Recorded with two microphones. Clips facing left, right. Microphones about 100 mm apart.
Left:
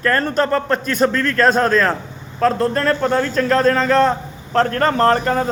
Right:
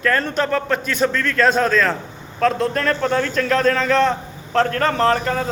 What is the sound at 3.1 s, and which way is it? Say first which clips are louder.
A man's voice: left 2 dB; 35° left (ahead or behind).